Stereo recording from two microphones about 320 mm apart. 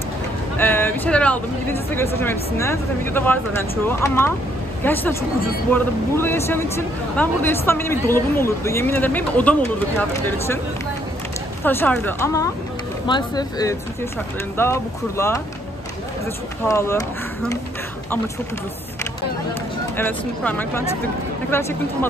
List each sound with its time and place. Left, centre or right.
0.6 s a woman's voice: centre
11.6 s a woman's voice: centre
16.6 s speech: centre
20.0 s a woman's voice: centre